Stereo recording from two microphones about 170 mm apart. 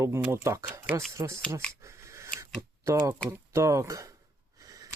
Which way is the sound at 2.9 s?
15° right (ahead or behind).